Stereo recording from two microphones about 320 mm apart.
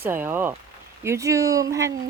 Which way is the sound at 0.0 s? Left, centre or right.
Centre.